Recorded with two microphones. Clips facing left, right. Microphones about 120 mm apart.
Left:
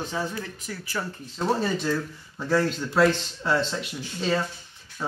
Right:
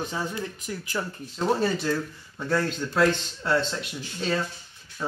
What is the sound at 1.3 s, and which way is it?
Speech, centre (ahead or behind).